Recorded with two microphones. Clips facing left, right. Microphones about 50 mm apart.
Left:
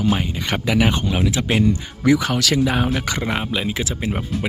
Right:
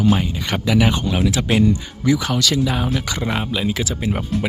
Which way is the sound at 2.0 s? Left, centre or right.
Left.